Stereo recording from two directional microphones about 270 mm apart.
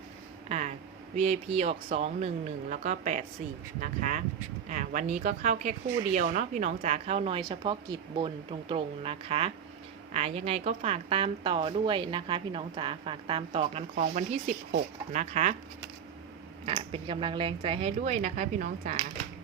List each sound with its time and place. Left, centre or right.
0.4 s a sound: right
1.1 s a woman's voice: right
16.6 s a woman's voice: right